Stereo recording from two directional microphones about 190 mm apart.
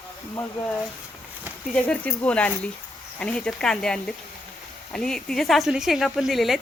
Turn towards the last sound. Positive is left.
turn(degrees=0)  # may be behind; listen again after turning